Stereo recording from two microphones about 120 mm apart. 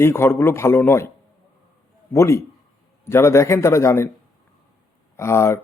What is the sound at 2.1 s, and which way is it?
Speech, 25° left (ahead or behind).